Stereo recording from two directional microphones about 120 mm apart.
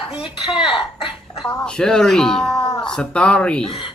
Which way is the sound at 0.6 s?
Centre (ahead or behind).